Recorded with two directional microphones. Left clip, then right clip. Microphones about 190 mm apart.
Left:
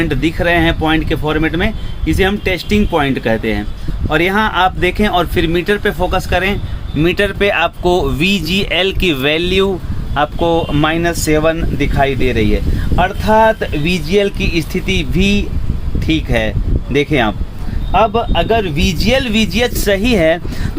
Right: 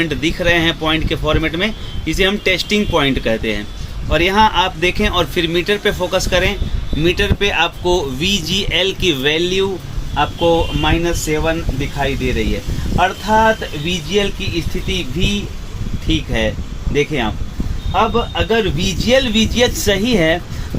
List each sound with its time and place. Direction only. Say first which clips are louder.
0.0 s speech: left 2 dB; 30° left (ahead or behind); by 11.5 s 55° left (ahead or behind)
13.0 s speech: left 2 dB; 55° left (ahead or behind)
16.0 s speech: left 2 dB; 50° left (ahead or behind)